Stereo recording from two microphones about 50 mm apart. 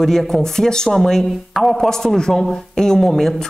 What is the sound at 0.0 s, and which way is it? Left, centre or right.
Speech, centre.